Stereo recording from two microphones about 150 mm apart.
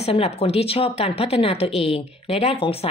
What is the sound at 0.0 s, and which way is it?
A woman's voice, 40° left (ahead or behind).